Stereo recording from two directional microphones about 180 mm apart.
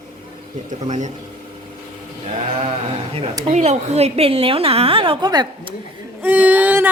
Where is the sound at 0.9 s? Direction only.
40° right (ahead or behind).